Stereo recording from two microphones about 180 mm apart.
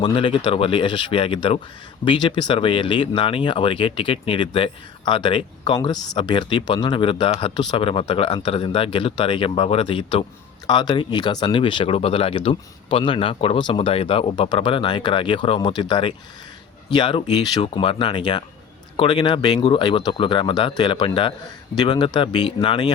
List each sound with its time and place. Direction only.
0.0 s speech: 25° left (ahead or behind)